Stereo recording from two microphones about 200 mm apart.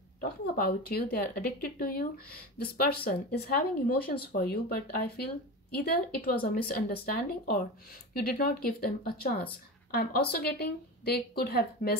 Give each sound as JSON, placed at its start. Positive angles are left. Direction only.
{"t": 0.2, "sound": "a woman's voice", "side_deg": 50}